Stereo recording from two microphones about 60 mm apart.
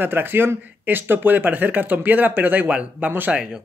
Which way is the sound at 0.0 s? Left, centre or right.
Right.